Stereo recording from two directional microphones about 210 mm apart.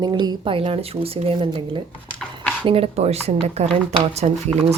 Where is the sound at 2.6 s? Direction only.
25° right (ahead or behind).